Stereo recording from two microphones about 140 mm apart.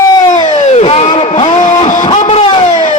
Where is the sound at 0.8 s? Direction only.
45° left (ahead or behind).